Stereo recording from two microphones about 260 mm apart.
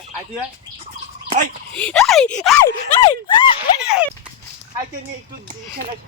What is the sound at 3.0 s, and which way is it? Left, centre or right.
Speech, centre.